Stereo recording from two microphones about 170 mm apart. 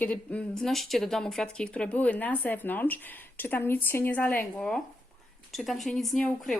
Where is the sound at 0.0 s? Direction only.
10° left (ahead or behind).